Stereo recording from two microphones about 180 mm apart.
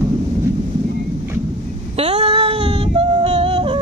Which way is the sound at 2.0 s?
35° right (ahead or behind).